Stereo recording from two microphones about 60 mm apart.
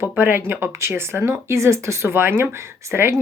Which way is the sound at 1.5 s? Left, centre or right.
Right.